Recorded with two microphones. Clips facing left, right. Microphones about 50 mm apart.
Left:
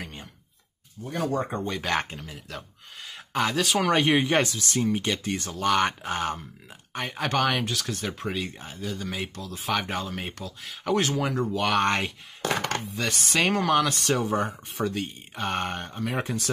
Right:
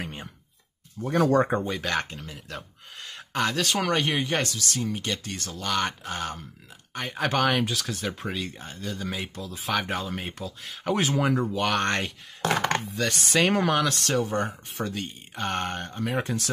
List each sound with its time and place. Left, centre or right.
0.0 s a sound: right
1.0 s speech: right
1.6 s speech: centre
3.9 s speech: left
7.0 s speech: centre
11.0 s speech: centre